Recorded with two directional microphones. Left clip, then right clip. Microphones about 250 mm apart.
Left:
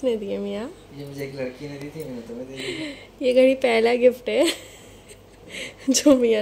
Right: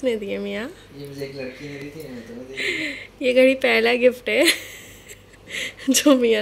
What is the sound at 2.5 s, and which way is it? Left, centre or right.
Speech, centre.